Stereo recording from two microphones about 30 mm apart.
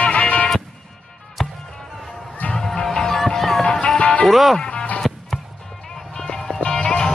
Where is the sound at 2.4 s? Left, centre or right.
Left.